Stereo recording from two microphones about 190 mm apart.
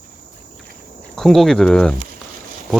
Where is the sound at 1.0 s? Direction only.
Centre (ahead or behind).